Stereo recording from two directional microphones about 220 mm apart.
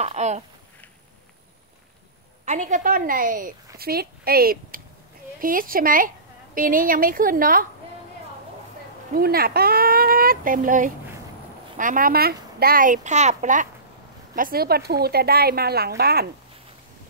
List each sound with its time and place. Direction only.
0.0 s a woman's voice: 30° right (ahead or behind)
2.4 s a woman's voice: 35° right (ahead or behind)
9.1 s a woman's voice: 45° right (ahead or behind)